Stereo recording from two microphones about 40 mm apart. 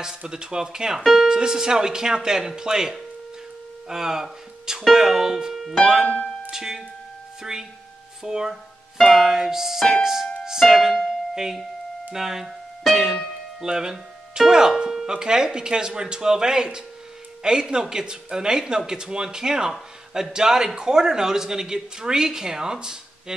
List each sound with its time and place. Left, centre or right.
0.3 s speech: centre
6.0 s speech: left
6.5 s speech: centre
8.2 s speech: centre
12.8 s keyboard: centre
13.6 s speech: centre